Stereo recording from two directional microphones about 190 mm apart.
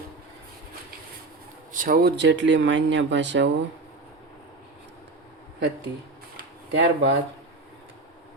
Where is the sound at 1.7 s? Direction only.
45° right (ahead or behind); by 3.5 s 70° right (ahead or behind).